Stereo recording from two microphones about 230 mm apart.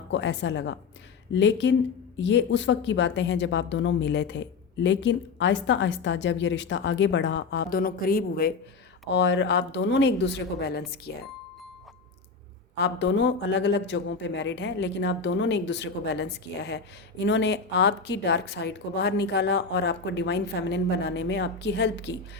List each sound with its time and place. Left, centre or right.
0.1 s a woman's voice: left
12.7 s a woman's voice: left